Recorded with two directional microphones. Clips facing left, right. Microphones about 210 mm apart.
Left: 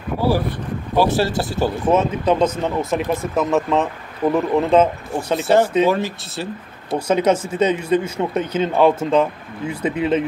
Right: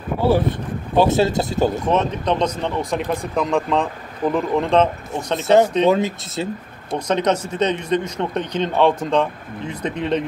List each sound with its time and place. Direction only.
0.9 s speech: 20° right (ahead or behind)
1.9 s speech: 5° left (ahead or behind)
5.9 s speech: 20° right (ahead or behind)
6.9 s speech: 10° left (ahead or behind)